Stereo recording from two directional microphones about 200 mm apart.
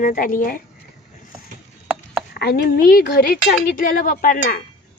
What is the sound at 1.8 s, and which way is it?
Chopping, centre (ahead or behind).